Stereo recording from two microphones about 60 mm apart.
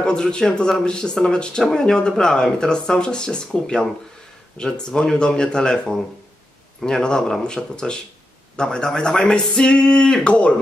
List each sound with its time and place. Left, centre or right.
0.0 s speech: centre